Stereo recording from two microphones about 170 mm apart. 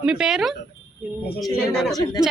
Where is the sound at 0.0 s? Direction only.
5° right (ahead or behind).